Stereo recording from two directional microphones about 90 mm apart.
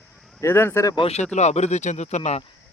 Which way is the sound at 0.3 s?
30° left (ahead or behind).